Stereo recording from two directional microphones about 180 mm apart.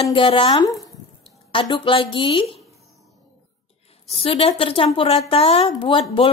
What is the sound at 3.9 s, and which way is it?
A woman's voice, 30° left (ahead or behind).